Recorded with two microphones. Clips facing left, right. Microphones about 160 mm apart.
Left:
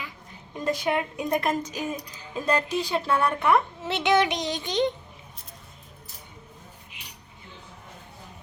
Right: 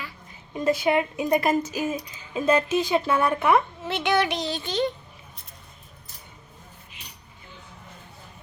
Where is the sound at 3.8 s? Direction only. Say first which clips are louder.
Left 1 dB; 20° left (ahead or behind).